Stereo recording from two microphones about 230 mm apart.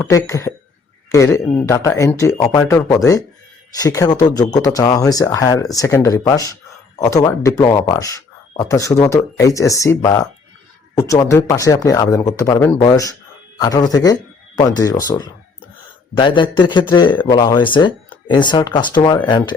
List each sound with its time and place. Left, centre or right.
0.0 s speech: centre